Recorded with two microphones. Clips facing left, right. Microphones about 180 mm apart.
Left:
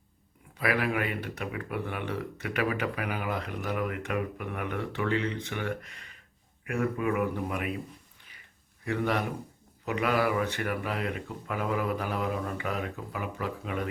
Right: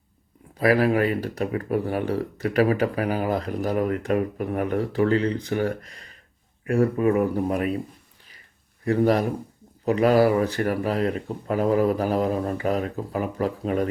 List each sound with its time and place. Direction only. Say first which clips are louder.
0.6 s speech: right 9 dB; 35° right (ahead or behind)
8.8 s speech: right 9 dB; 35° right (ahead or behind)